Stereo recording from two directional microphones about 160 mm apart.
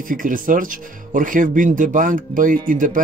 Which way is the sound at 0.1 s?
60° right (ahead or behind).